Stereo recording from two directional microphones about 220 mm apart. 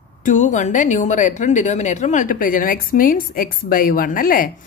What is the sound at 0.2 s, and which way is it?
Speech, 35° left (ahead or behind).